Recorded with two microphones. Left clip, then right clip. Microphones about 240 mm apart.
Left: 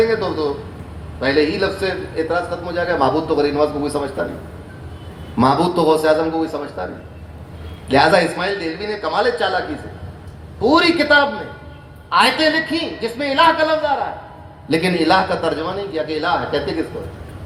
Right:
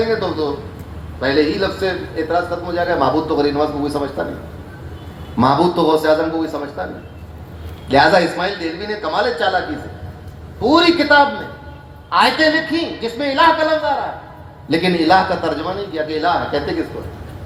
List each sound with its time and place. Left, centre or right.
1.2 s a man's voice: left
5.4 s a man's voice: left
7.9 s a man's voice: left
10.6 s a man's voice: left